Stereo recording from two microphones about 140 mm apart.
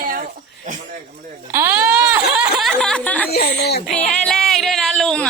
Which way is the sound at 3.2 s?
90° left.